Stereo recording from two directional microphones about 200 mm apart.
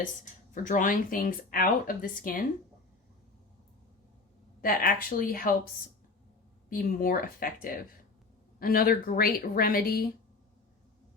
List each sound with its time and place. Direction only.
0.5 s speech: 40° left (ahead or behind)
4.6 s speech: 45° left (ahead or behind)
6.7 s speech: 45° left (ahead or behind)